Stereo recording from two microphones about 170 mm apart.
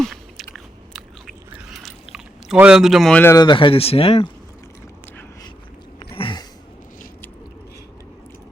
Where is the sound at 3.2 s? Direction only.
25° left (ahead or behind).